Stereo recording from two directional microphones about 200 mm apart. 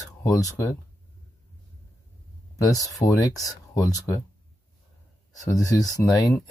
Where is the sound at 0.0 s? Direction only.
15° left (ahead or behind).